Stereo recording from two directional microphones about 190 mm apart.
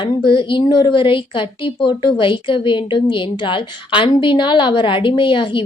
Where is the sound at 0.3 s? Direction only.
25° left (ahead or behind).